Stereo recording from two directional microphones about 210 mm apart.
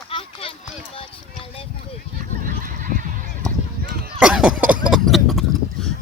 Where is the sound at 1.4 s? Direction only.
25° left (ahead or behind).